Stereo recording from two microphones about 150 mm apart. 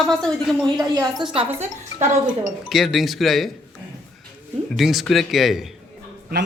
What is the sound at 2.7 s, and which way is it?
Speech, centre (ahead or behind).